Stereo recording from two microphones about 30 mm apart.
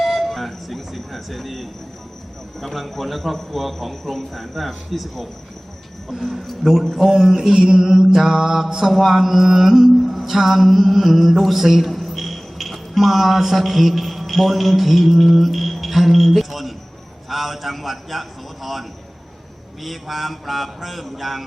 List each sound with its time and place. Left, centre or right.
0.0 s a sound: centre
2.6 s speech: centre
6.9 s mantra: centre
9.0 s music: centre
17.2 s speech: centre